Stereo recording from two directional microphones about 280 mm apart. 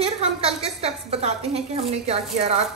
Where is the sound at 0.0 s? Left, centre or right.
Right.